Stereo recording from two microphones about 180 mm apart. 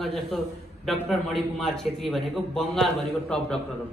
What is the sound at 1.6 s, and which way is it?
A man's voice, centre (ahead or behind).